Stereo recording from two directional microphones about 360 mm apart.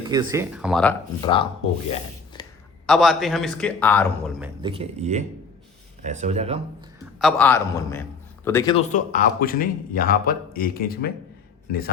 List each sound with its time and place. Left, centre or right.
0.1 s a man's voice: centre
1.9 s rub: centre
2.8 s a man's voice: centre
7.2 s a man's voice: centre; by 11.1 s left